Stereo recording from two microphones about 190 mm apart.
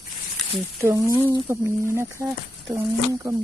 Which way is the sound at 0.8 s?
15° right (ahead or behind).